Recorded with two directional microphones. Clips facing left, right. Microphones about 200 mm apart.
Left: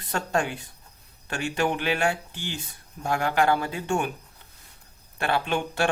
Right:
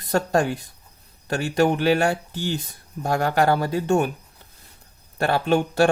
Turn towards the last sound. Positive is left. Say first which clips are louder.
# right 7 dB
turn(degrees=-40)  # may be behind; listen again after turning